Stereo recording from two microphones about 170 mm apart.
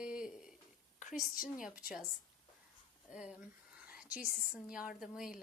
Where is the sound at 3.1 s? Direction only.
5° right (ahead or behind).